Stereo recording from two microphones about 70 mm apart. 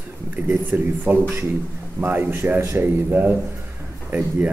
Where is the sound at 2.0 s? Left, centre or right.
Right.